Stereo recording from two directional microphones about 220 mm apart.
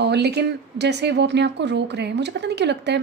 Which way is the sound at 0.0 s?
50° right (ahead or behind).